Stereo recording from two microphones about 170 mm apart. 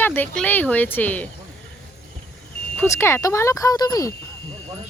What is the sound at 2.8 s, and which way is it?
Speech, 15° left (ahead or behind).